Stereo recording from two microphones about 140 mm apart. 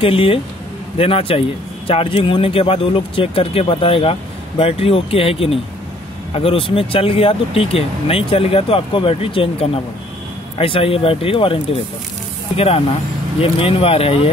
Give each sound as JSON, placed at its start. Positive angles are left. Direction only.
{"t": 0.0, "sound": "speech", "side_deg": 40}